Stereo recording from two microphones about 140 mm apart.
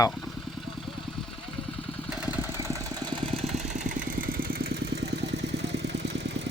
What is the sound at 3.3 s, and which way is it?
Vehicle, 50° right (ahead or behind).